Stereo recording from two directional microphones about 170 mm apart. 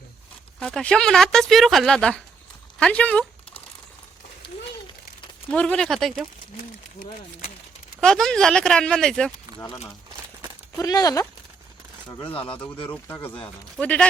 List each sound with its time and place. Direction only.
0.6 s speech: 5° left (ahead or behind)
2.7 s a sound: 5° left (ahead or behind)
4.4 s a sound: 30° left (ahead or behind)
5.5 s speech: 5° left (ahead or behind)
8.0 s speech: 5° left (ahead or behind)
10.8 s speech: 20° left (ahead or behind)
12.6 s speech: 30° left (ahead or behind)
12.9 s speech: 15° left (ahead or behind)